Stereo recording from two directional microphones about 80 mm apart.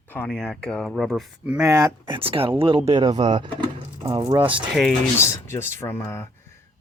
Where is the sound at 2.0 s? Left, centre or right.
Right.